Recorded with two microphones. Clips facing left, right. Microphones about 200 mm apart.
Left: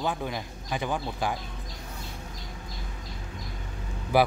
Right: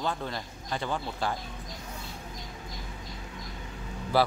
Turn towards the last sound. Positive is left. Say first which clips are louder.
# left 2 dB
turn(degrees=15)  # may be behind; listen again after turning